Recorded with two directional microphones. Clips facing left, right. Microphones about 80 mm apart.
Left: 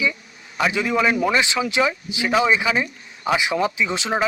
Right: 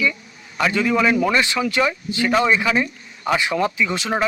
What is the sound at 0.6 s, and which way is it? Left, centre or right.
A man's voice, centre.